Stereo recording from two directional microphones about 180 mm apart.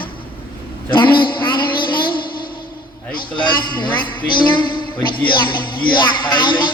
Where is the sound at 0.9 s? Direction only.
25° left (ahead or behind).